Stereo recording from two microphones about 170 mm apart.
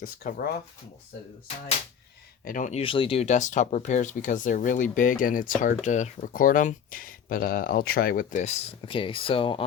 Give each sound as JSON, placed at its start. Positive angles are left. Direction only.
{"t": 0.0, "sound": "speech", "side_deg": 60}
{"t": 2.4, "sound": "speech", "side_deg": 50}
{"t": 2.8, "sound": "speech", "side_deg": 30}